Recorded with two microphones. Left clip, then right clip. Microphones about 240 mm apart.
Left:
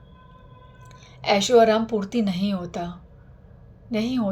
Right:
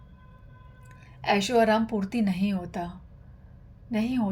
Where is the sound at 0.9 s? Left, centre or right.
Right.